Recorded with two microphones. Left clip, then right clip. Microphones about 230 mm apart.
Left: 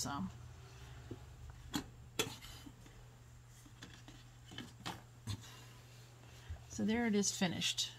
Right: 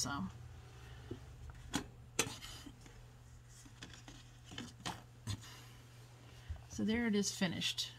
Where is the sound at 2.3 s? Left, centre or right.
Right.